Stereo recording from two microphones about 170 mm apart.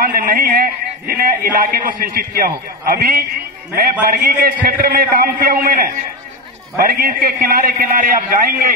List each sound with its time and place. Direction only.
0.0 s a man's voice: 55° right (ahead or behind)